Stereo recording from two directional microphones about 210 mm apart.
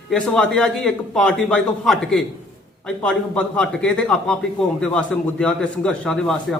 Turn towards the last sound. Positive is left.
turn(degrees=0)  # may be behind; listen again after turning